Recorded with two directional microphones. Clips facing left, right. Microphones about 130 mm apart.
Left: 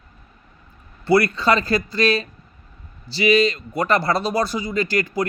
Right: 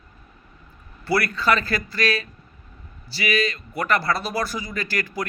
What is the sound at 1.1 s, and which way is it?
Speech, 25° left (ahead or behind).